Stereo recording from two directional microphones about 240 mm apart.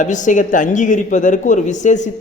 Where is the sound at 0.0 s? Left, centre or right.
Left.